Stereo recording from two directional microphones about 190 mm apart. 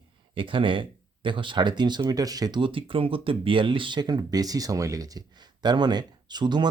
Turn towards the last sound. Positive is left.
turn(degrees=-25)  # may be behind; listen again after turning